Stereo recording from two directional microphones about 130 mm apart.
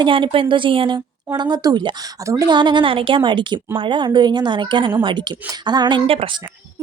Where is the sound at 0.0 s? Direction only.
40° right (ahead or behind).